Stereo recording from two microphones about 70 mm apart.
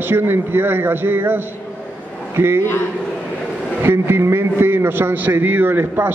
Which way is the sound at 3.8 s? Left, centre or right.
Right.